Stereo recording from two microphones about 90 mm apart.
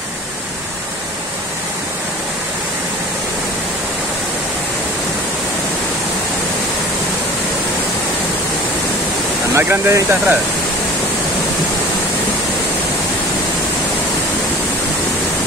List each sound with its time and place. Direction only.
9.6 s speech: 30° right (ahead or behind)